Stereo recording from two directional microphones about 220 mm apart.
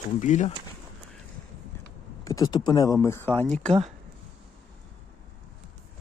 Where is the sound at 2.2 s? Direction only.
15° left (ahead or behind).